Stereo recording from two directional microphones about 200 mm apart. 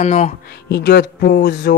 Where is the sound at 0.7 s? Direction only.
55° left (ahead or behind).